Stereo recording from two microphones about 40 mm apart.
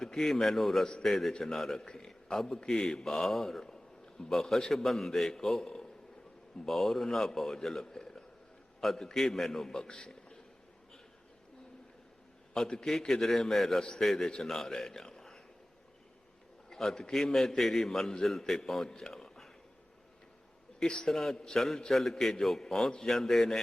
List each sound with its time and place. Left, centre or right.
0.0 s a man's voice: centre
12.5 s a man's voice: centre
16.6 s a man's voice: centre
20.7 s a man's voice: centre